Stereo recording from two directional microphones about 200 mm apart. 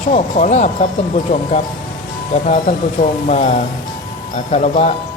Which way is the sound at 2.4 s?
40° left (ahead or behind).